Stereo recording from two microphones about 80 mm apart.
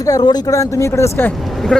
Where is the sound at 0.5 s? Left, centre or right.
Left.